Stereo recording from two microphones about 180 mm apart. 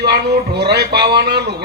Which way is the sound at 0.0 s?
70° right (ahead or behind).